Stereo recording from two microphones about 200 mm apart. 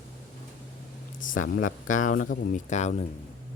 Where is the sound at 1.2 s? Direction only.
40° left (ahead or behind).